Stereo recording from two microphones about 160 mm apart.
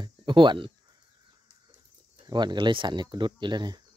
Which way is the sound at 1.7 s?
25° right (ahead or behind).